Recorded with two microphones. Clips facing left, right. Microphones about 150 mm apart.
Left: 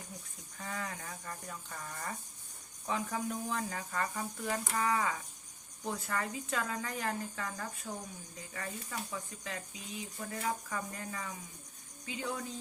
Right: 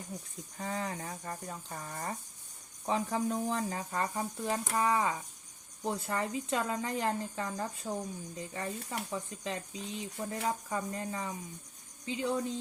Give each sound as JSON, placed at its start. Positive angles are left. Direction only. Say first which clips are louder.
{"t": 0.6, "sound": "speech", "louder": "right 5 dB", "side_deg": -30}